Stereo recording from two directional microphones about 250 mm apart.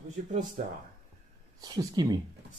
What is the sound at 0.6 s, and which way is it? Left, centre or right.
Speech, right.